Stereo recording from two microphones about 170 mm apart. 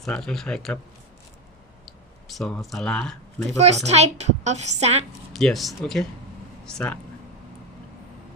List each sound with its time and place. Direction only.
0.0 s speech: 5° left (ahead or behind)
2.2 s speech: centre (ahead or behind)
3.6 s a woman's voice: 40° right (ahead or behind)
5.3 s speech: centre (ahead or behind)